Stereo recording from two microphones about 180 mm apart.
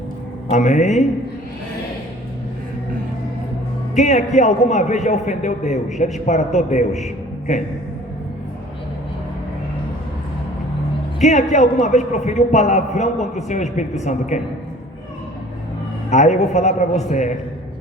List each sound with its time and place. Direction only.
0.5 s a man's voice: 40° left (ahead or behind)
3.9 s a man's voice: 40° left (ahead or behind)
11.2 s a man's voice: 40° left (ahead or behind)
16.0 s a man's voice: 40° left (ahead or behind)